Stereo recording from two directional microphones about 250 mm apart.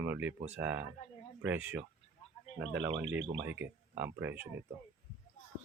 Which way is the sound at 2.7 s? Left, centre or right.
Right.